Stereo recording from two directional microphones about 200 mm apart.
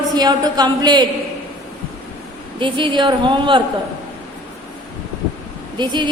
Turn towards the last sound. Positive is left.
turn(degrees=-20)  # may be behind; listen again after turning